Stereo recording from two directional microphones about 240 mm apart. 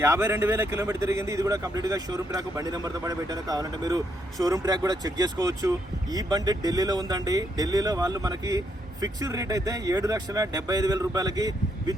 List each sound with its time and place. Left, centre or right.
0.0 s speech: centre